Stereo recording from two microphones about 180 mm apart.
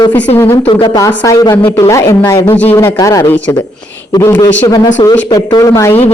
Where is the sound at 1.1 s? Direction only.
15° left (ahead or behind).